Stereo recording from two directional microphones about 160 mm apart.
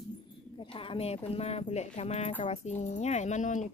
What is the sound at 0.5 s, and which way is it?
A woman's voice, 35° left (ahead or behind).